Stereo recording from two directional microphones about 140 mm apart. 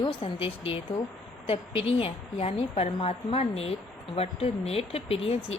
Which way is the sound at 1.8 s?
45° left (ahead or behind).